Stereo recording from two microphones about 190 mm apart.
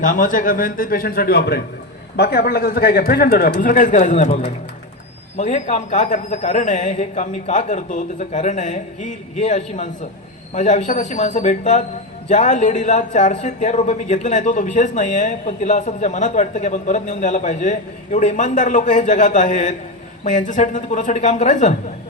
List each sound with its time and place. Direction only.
0.0 s speech: 45° left (ahead or behind)